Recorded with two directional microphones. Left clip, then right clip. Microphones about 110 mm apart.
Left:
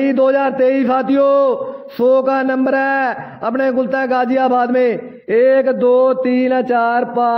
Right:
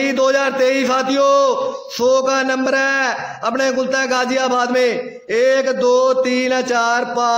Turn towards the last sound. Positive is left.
turn(degrees=35)  # may be behind; listen again after turning